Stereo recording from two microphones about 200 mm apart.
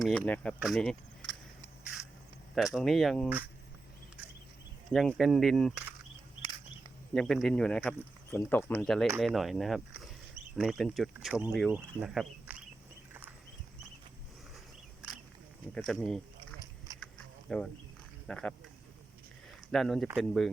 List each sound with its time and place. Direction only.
0.0 s speech: 5° left (ahead or behind)
2.6 s speech: centre (ahead or behind)
4.9 s speech: centre (ahead or behind)
7.1 s speech: centre (ahead or behind)
15.7 s speech: centre (ahead or behind)
17.5 s speech: centre (ahead or behind)
19.7 s speech: centre (ahead or behind)